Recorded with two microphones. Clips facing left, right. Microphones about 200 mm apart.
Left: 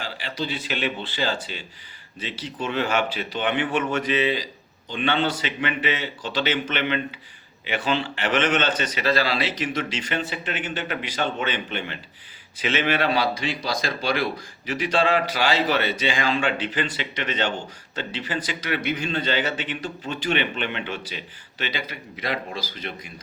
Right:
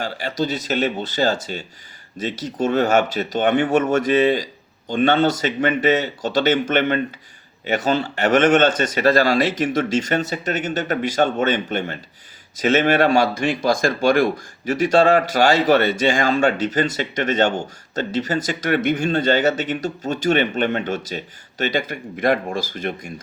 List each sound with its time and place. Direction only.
0.0 s speech: 45° right (ahead or behind)